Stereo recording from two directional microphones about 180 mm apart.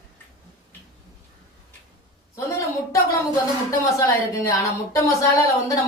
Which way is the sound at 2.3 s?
20° left (ahead or behind).